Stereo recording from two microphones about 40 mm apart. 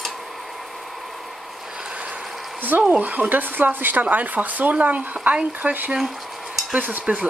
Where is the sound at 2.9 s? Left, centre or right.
Right.